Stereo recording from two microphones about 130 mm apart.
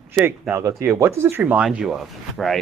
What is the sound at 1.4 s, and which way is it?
Speech, 5° right (ahead or behind).